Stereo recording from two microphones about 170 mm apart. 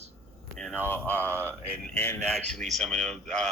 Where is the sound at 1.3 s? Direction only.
15° right (ahead or behind).